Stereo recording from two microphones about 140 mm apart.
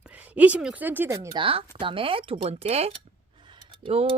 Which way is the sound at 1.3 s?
40° right (ahead or behind).